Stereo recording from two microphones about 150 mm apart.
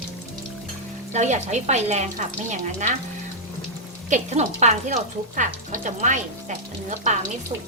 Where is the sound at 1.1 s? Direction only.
50° right (ahead or behind).